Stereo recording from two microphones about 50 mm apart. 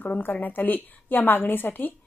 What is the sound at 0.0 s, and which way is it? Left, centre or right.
Speech, left.